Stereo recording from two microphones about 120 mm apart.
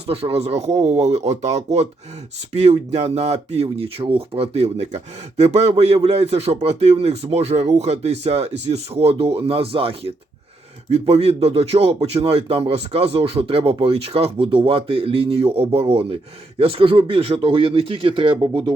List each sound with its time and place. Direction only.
0.1 s speech: 55° right (ahead or behind)